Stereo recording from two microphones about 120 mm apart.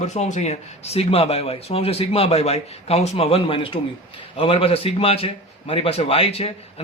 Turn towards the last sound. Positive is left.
turn(degrees=55)  # may be behind; listen again after turning